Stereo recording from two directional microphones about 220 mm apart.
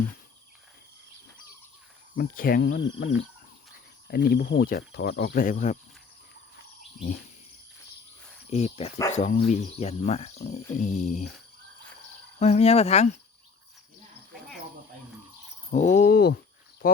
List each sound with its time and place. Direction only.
2.1 s speech: 40° left (ahead or behind)
2.6 s speech: 55° left (ahead or behind)
4.1 s speech: 45° left (ahead or behind)
8.4 s cricket: 30° left (ahead or behind)
9.1 s speech: 35° left (ahead or behind)
12.4 s cricket: 30° left (ahead or behind)
15.7 s speech: 35° left (ahead or behind)